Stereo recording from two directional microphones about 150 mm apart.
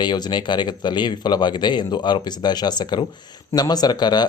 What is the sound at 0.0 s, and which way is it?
Speech, 30° left (ahead or behind).